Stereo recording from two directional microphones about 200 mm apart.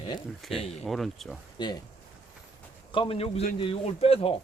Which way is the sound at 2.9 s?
25° left (ahead or behind).